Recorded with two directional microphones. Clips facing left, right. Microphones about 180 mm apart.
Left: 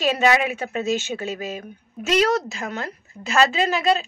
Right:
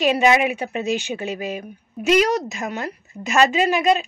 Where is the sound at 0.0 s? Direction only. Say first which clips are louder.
Right 2 dB; 15° right (ahead or behind).